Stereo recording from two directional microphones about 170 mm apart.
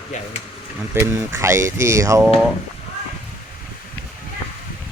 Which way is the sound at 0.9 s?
15° right (ahead or behind).